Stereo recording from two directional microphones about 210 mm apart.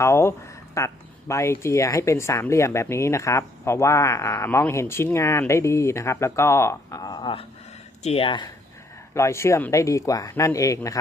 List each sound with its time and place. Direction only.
0.0 s speech: 15° left (ahead or behind)